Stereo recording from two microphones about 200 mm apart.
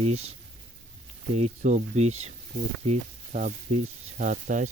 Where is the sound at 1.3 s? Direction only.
35° right (ahead or behind).